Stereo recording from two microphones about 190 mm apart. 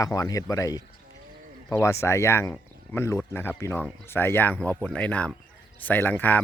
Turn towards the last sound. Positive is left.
turn(degrees=10)  # may be behind; listen again after turning